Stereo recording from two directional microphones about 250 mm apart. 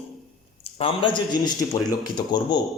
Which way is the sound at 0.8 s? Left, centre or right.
Centre.